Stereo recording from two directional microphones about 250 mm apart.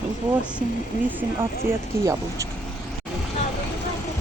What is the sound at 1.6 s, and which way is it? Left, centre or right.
Speech, centre.